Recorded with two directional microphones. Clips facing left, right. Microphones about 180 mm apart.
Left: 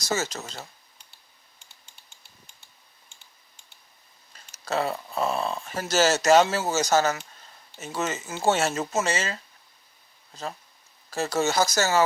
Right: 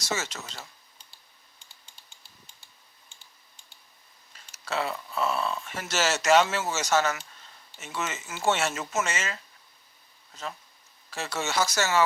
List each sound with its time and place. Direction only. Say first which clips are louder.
0.0 s speech: left 4 dB; 40° left (ahead or behind)
4.5 s speech: left 4 dB; 40° left (ahead or behind)
11.1 s speech: left 6 dB; 40° left (ahead or behind)